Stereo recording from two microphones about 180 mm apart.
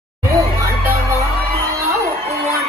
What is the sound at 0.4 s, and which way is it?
Music, 15° right (ahead or behind).